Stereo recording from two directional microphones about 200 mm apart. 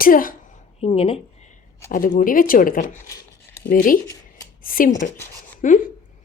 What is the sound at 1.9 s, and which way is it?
A woman's voice, 40° left (ahead or behind).